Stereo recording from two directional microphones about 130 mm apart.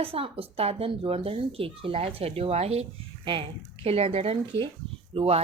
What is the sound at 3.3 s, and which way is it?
Speech, 45° right (ahead or behind).